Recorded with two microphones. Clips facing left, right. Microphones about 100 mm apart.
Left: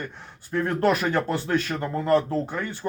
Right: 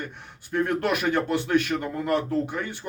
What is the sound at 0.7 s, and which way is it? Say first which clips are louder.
Speech: left 5 dB; 40° left (ahead or behind).